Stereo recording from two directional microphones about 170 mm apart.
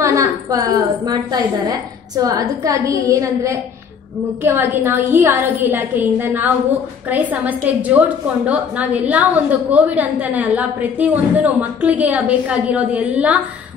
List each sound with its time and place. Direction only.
0.0 s a woman's voice: 20° right (ahead or behind)